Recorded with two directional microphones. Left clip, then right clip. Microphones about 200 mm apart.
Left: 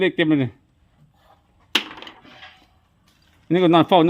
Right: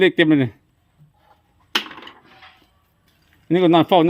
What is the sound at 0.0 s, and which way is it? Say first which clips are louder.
Speech: right 4 dB; 20° right (ahead or behind).